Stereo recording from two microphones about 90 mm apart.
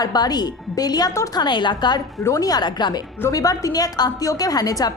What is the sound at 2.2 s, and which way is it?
Speech, 40° left (ahead or behind).